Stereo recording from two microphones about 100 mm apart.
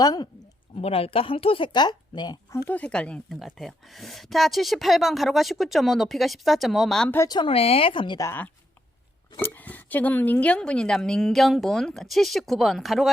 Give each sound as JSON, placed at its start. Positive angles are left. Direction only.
{"t": 0.0, "sound": "speech", "side_deg": 40}
{"t": 0.8, "sound": "speech", "side_deg": 75}
{"t": 2.5, "sound": "speech", "side_deg": 30}
{"t": 2.7, "sound": "speech", "side_deg": 10}
{"t": 3.3, "sound": "a woman's voice", "side_deg": 0}
{"t": 7.3, "sound": "speech", "side_deg": 50}
{"t": 7.5, "sound": "speech", "side_deg": 75}
{"t": 8.2, "sound": "a woman's voice", "side_deg": 25}